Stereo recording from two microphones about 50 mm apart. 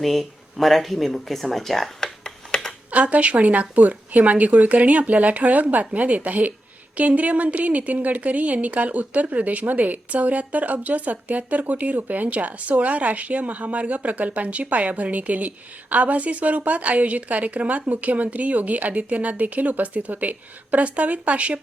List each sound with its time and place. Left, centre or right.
0.0 s speech: centre
2.9 s speech: right